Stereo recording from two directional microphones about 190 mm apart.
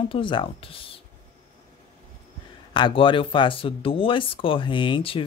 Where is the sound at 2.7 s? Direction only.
25° left (ahead or behind).